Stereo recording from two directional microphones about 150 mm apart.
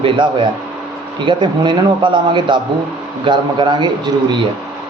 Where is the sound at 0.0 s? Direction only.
35° right (ahead or behind).